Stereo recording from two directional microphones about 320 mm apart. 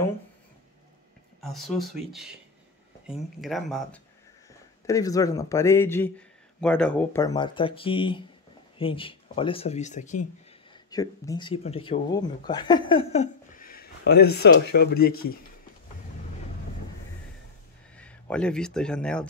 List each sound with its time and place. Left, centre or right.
1.4 s speech: centre
3.1 s speech: centre
4.8 s speech: centre
10.7 s speech: centre; by 15.2 s left
17.9 s speech: centre